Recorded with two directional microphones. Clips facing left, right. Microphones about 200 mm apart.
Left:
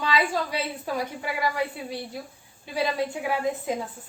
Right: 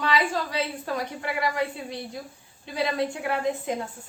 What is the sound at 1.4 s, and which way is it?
Speech, 5° left (ahead or behind).